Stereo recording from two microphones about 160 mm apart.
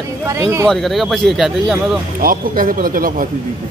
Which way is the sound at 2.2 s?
60° right (ahead or behind).